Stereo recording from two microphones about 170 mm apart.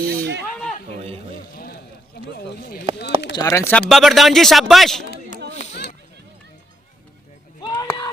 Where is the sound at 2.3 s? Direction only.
70° left (ahead or behind).